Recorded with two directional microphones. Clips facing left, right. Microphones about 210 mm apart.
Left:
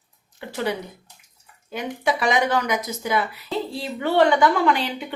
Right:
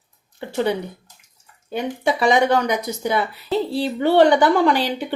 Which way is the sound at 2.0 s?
30° right (ahead or behind).